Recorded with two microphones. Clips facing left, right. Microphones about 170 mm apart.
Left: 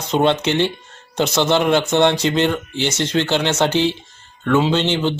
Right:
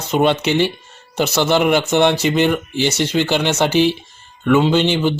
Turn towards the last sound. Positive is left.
turn(degrees=-10)  # may be behind; listen again after turning